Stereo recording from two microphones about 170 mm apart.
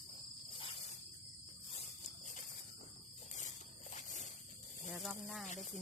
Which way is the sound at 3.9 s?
45° left (ahead or behind).